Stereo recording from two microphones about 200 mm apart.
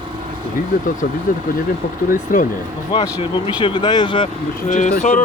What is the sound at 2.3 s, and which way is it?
Speech, 40° left (ahead or behind).